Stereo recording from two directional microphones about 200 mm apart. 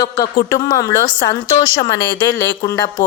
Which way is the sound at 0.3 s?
15° left (ahead or behind).